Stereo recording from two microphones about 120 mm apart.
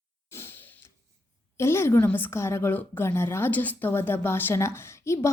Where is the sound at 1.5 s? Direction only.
20° left (ahead or behind).